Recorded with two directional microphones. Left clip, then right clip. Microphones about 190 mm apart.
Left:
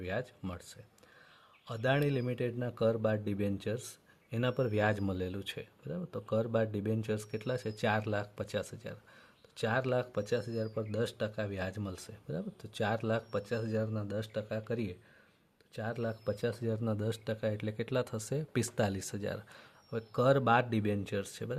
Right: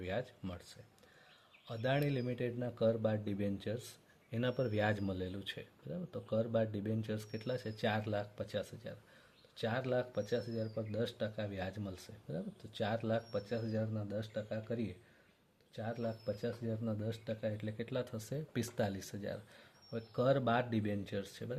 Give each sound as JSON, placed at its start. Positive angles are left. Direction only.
{"t": 0.0, "sound": "speech", "side_deg": 25}